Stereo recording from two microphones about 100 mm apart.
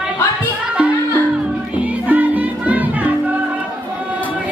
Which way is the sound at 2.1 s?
15° right (ahead or behind).